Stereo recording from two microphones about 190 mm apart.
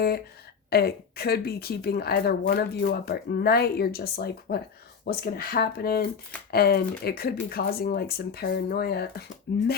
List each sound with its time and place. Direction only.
0.7 s speech: 55° left (ahead or behind)